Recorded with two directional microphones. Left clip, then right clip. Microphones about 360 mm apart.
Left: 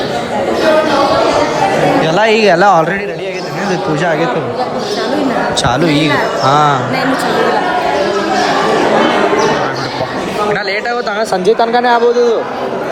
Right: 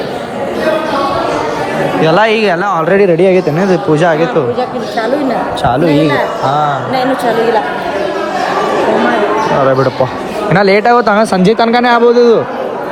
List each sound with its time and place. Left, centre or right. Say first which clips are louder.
2.0 s speech: right 3 dB; centre
3.0 s a man's voice: right 11 dB; centre
5.6 s speech: right 5 dB; centre
10.5 s a man's voice: right 7 dB; centre